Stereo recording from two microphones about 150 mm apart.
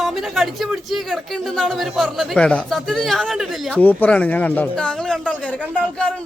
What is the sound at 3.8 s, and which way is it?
A man's voice, 10° left (ahead or behind).